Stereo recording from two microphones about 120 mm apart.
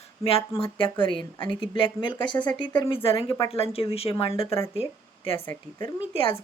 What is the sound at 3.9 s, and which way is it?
Speech, 55° left (ahead or behind).